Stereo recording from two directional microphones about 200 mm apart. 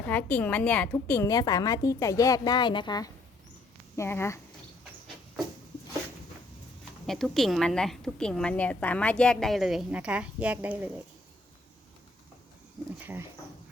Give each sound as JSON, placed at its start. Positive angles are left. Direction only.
{"t": 0.1, "sound": "a woman's voice", "side_deg": 10}
{"t": 7.1, "sound": "a woman's voice", "side_deg": 0}